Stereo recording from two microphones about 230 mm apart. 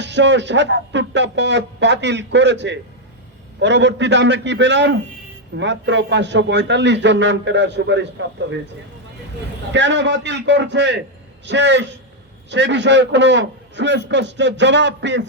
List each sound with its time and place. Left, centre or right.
0.0 s a man's voice: right
9.7 s a man's voice: right